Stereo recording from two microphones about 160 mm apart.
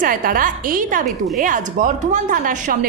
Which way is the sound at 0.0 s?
60° right (ahead or behind).